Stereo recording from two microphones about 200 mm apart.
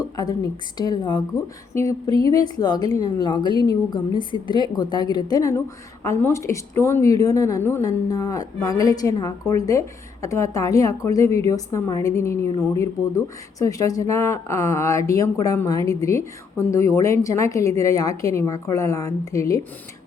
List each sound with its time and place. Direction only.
0.8 s a woman's voice: 20° left (ahead or behind)